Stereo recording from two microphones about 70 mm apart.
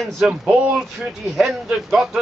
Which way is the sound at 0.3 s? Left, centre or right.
Centre.